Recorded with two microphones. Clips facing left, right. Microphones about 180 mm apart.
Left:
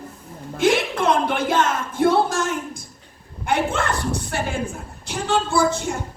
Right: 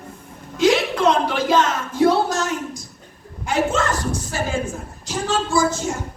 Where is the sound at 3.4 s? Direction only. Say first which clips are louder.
Right 1 dB; 60° left (ahead or behind).